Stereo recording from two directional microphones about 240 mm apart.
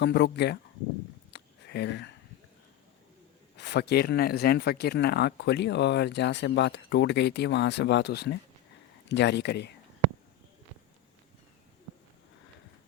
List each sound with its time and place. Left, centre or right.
0.0 s speech: left
1.3 s a sound: left
3.6 s speech: left